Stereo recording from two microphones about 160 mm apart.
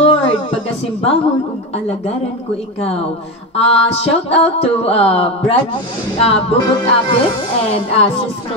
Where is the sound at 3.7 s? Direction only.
40° left (ahead or behind).